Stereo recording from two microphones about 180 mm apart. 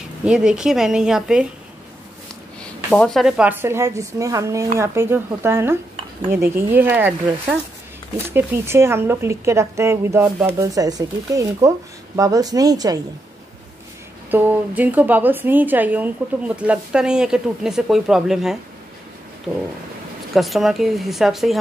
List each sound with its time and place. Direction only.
0.2 s speech: 5° right (ahead or behind)
2.9 s a woman's voice: 5° left (ahead or behind); by 13.0 s 20° right (ahead or behind)
14.3 s a woman's voice: 10° right (ahead or behind)
20.3 s speech: centre (ahead or behind)